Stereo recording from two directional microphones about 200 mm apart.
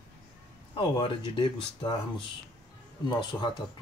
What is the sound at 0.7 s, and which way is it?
Speech, 25° left (ahead or behind).